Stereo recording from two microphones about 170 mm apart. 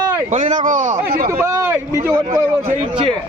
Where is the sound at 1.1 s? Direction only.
60° right (ahead or behind).